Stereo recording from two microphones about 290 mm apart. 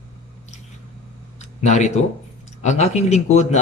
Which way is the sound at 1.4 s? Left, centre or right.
Left.